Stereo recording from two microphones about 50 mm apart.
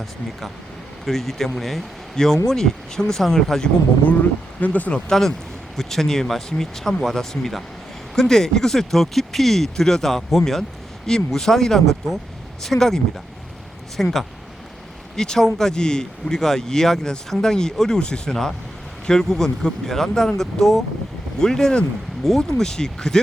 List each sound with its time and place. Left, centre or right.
1.0 s speech: centre
4.0 s speech: left
4.9 s speech: centre